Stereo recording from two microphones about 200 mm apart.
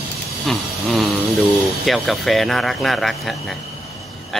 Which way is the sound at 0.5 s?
Centre (ahead or behind).